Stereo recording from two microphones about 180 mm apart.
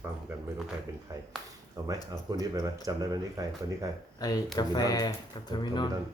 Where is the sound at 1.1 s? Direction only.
20° right (ahead or behind).